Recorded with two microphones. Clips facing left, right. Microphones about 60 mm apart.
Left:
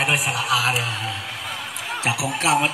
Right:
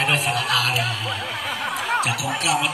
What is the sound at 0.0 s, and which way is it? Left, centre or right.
A man's voice, centre.